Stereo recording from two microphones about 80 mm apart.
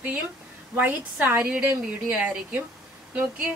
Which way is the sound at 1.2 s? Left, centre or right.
Right.